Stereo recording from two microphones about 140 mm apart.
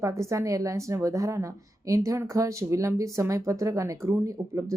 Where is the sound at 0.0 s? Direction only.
20° right (ahead or behind).